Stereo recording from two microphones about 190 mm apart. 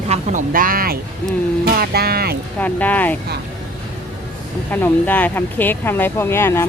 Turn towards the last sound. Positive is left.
turn(degrees=15)  # may be behind; listen again after turning